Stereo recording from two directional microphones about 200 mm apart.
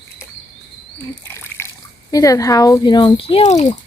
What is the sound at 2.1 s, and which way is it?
Speech, 15° left (ahead or behind).